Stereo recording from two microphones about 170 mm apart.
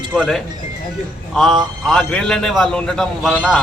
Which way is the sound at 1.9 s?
5° left (ahead or behind).